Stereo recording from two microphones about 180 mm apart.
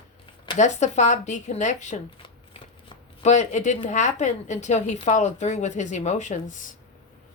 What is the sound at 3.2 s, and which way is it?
A woman's voice, 40° left (ahead or behind).